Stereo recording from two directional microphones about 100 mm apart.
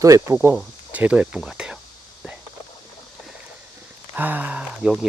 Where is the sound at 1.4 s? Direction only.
5° right (ahead or behind).